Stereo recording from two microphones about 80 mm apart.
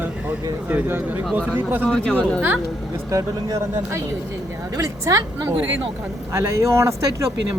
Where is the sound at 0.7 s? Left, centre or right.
Right.